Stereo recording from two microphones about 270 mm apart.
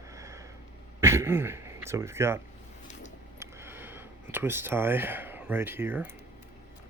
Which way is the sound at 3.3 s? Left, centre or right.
Centre.